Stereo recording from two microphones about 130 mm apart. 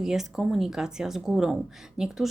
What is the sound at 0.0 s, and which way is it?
A woman's voice, 5° right (ahead or behind).